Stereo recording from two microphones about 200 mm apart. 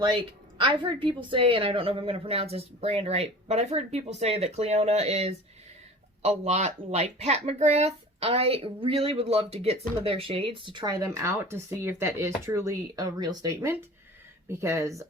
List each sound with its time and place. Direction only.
0.0 s a woman's voice: 25° right (ahead or behind)